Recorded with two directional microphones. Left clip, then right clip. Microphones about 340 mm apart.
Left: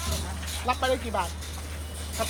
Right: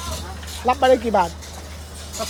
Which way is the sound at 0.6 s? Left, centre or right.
Right.